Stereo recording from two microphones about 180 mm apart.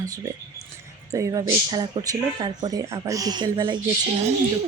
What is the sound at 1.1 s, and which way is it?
Speech, 20° right (ahead or behind).